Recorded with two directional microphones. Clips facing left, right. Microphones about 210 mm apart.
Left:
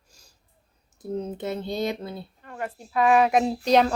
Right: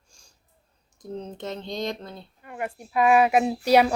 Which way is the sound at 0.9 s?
5° left (ahead or behind).